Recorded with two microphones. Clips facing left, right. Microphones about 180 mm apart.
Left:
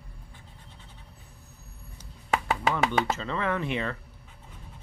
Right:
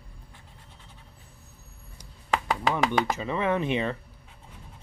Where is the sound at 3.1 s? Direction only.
15° right (ahead or behind).